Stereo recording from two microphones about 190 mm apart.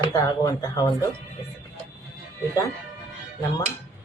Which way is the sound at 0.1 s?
20° left (ahead or behind).